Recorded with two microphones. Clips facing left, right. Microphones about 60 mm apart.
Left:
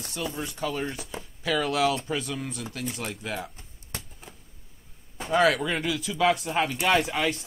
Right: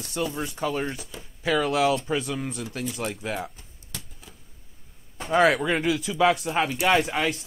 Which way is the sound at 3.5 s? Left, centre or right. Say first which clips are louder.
Left 2 dB; left.